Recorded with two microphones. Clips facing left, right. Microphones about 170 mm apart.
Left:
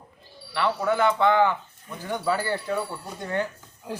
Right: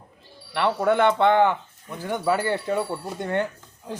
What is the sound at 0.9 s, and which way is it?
Speech, 60° right (ahead or behind).